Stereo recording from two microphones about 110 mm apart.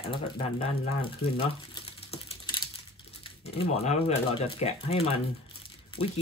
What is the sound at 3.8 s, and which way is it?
Speech, 75° left (ahead or behind).